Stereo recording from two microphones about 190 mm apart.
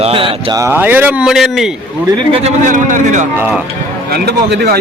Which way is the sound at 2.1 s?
30° right (ahead or behind).